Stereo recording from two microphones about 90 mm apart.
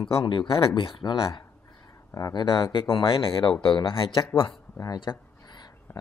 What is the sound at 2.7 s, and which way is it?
Speech, 65° left (ahead or behind).